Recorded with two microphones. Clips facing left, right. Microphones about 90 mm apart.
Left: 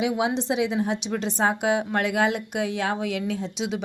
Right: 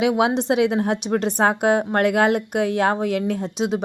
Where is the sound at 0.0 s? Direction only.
65° right (ahead or behind).